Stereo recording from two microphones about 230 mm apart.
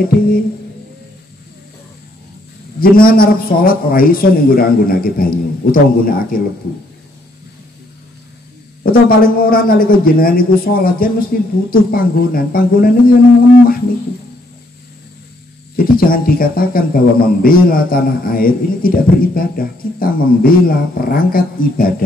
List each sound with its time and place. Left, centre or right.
2.8 s a man's voice: left
9.2 s a man's voice: left
15.7 s a man's voice: left